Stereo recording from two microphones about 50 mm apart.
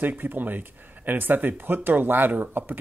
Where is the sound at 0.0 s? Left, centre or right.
Right.